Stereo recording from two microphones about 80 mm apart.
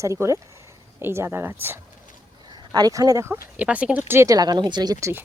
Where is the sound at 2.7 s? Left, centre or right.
Right.